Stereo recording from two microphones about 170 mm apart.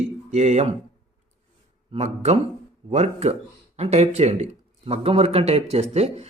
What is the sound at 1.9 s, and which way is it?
A man's voice, 40° right (ahead or behind).